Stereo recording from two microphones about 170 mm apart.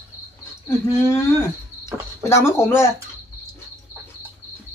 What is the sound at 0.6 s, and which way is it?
Cricket, 15° left (ahead or behind).